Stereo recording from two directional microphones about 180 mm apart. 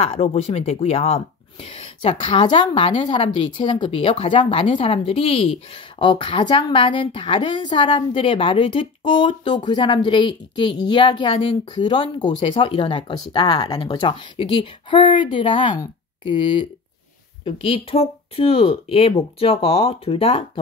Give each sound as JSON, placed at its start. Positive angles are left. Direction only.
{"t": 0.0, "sound": "a woman's voice", "side_deg": 35}